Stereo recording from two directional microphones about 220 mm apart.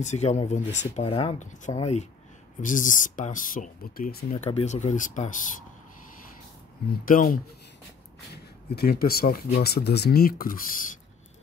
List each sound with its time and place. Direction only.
0.0 s speech: 30° left (ahead or behind)
4.3 s speech: 30° left (ahead or behind)
7.1 s speech: 40° left (ahead or behind)
8.6 s speech: 45° left (ahead or behind)